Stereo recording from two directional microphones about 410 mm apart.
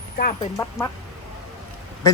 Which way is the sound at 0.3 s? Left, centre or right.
Centre.